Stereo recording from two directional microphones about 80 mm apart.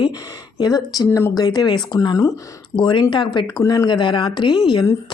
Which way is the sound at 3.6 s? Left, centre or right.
Left.